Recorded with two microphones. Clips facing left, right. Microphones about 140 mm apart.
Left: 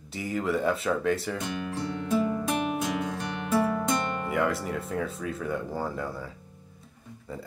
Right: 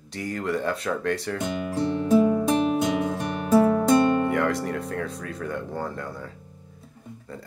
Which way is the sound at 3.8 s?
35° right (ahead or behind).